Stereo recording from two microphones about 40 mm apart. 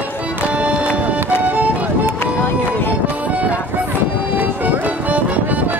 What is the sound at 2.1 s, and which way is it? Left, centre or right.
Music, left.